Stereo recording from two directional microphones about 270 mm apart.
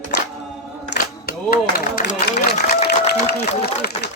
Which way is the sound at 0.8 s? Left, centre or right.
Left.